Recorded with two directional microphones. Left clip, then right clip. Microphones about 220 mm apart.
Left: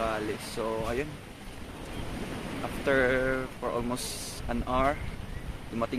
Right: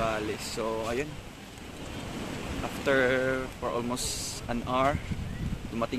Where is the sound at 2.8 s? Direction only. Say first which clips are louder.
Even; 5° right (ahead or behind).